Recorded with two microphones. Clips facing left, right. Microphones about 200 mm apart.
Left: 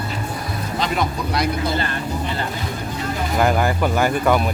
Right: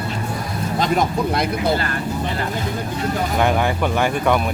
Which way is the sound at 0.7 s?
45° right (ahead or behind).